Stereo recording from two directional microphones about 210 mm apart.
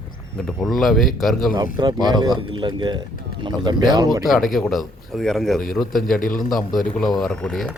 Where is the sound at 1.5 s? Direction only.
20° right (ahead or behind).